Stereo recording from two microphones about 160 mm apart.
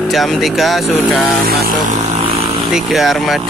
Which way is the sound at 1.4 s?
75° right (ahead or behind).